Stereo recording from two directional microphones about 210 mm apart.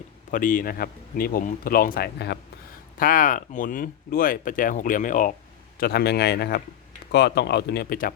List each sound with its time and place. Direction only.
0.3 s speech: 40° left (ahead or behind)
3.0 s speech: 40° left (ahead or behind)
5.8 s speech: 50° left (ahead or behind)